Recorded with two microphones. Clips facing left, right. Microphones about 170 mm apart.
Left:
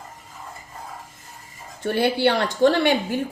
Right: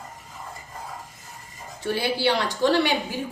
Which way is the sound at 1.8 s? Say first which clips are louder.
Left 4 dB; 55° left (ahead or behind).